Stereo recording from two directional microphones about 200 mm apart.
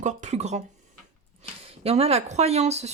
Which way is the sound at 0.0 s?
35° right (ahead or behind).